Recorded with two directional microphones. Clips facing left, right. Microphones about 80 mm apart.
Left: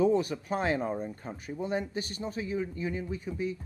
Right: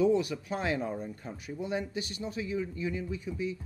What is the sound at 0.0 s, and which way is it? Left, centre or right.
Speech, left.